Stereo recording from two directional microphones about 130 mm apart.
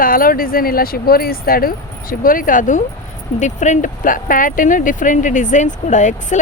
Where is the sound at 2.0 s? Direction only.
90° left.